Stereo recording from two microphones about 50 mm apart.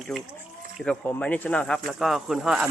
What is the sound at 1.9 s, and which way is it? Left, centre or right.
Speech, centre.